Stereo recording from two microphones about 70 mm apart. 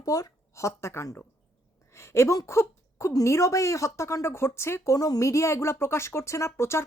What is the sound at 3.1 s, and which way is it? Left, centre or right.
Speech, left.